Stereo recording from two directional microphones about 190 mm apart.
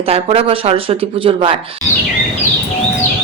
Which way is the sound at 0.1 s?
30° right (ahead or behind).